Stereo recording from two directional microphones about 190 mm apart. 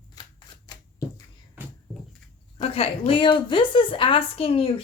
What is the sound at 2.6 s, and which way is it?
A woman's voice, 30° left (ahead or behind).